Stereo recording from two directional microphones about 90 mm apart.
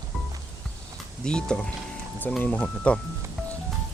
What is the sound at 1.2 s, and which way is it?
Speech, 10° left (ahead or behind).